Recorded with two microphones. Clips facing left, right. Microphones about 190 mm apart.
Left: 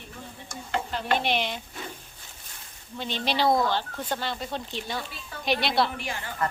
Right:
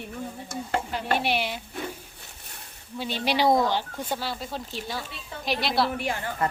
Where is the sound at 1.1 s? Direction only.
10° right (ahead or behind).